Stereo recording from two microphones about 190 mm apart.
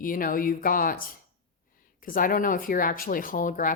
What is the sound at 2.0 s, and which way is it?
Speech, 50° left (ahead or behind).